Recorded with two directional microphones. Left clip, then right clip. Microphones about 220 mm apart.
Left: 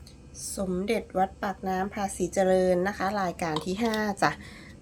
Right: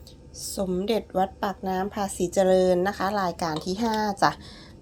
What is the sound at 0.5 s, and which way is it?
A woman's voice, 10° right (ahead or behind).